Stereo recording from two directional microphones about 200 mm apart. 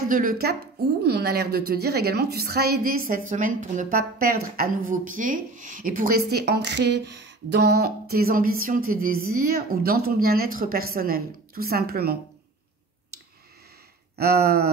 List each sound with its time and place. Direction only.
0.1 s a woman's voice: 45° right (ahead or behind)
14.1 s a woman's voice: 50° right (ahead or behind)